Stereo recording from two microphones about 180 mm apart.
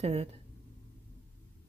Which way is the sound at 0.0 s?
35° right (ahead or behind).